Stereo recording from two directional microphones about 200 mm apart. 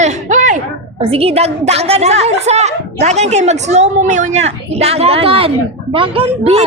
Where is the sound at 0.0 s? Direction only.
35° right (ahead or behind).